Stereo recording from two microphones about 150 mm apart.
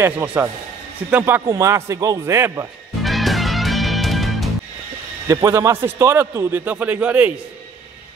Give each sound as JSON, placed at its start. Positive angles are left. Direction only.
{"t": 0.0, "sound": "a man's voice", "side_deg": -10}
{"t": 3.0, "sound": "music", "side_deg": 0}
{"t": 5.3, "sound": "a man's voice", "side_deg": -20}